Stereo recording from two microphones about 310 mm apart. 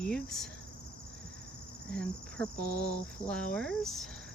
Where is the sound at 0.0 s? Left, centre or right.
Centre.